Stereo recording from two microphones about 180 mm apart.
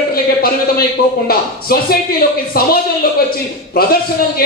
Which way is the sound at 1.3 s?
55° left (ahead or behind).